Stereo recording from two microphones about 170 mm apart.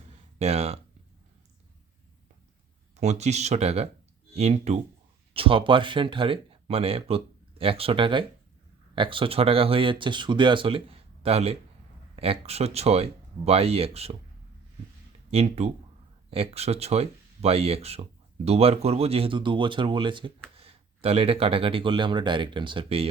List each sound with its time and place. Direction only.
0.3 s speech: 35° right (ahead or behind)
3.0 s speech: 40° right (ahead or behind)
15.3 s speech: 35° right (ahead or behind)